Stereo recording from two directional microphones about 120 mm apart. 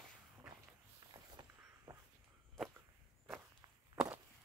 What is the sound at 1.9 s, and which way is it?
Dog, 30° right (ahead or behind).